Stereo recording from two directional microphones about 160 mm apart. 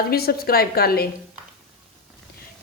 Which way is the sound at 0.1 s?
75° left (ahead or behind).